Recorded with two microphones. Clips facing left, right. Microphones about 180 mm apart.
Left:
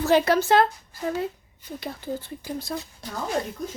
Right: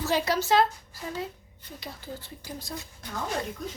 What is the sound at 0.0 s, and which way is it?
Speech, 55° left (ahead or behind).